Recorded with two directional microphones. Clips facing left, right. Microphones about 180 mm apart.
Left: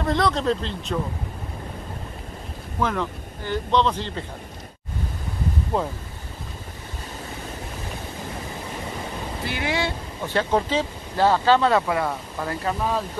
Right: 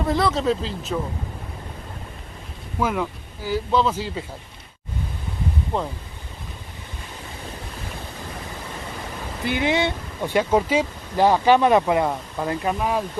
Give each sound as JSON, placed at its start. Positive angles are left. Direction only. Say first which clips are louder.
{"t": 0.0, "sound": "speech", "louder": "right 1 dB", "side_deg": -5}
{"t": 2.8, "sound": "speech", "louder": "right 1 dB", "side_deg": -10}
{"t": 5.7, "sound": "speech", "louder": "left 2 dB", "side_deg": 5}
{"t": 9.4, "sound": "speech", "louder": "right 5 dB", "side_deg": -20}